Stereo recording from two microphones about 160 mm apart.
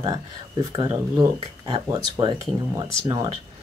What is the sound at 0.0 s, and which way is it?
Speech, 20° right (ahead or behind).